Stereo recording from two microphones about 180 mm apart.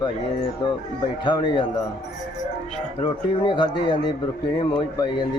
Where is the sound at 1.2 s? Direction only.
25° left (ahead or behind).